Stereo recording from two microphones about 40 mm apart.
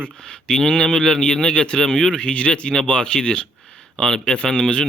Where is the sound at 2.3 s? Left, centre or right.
Left.